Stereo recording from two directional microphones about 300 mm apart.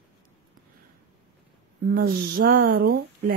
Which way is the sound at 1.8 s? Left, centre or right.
Right.